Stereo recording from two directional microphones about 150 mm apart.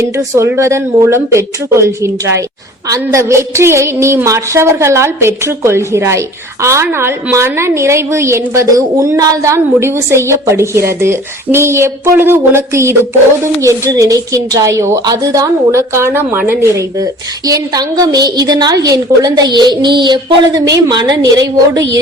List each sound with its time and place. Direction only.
0.2 s a woman's voice: 15° right (ahead or behind)